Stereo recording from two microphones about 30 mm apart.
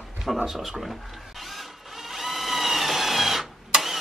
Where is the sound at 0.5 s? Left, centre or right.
Centre.